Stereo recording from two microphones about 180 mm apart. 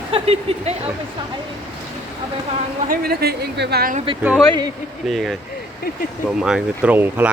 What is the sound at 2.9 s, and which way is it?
Speech, 60° right (ahead or behind).